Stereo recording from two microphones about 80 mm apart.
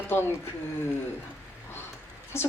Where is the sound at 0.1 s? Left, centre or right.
Left.